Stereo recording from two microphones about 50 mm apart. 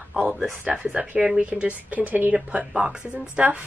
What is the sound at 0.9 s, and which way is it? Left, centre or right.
Speech, centre.